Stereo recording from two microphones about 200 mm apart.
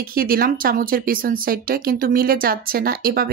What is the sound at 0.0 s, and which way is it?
Speech, 45° right (ahead or behind).